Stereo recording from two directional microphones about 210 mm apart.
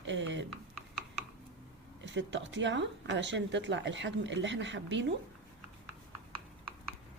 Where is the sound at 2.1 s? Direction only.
60° right (ahead or behind).